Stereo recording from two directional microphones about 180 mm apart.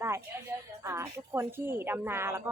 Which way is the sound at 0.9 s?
15° right (ahead or behind).